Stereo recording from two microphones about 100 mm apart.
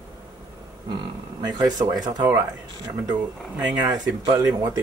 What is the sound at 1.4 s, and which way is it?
Speech, 40° right (ahead or behind).